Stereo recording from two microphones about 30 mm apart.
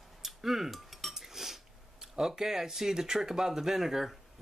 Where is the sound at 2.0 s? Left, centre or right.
Centre.